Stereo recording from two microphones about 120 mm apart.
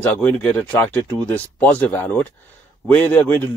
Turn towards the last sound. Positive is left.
turn(degrees=15)  # may be behind; listen again after turning